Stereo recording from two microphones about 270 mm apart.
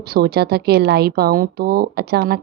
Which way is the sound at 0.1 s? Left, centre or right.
Right.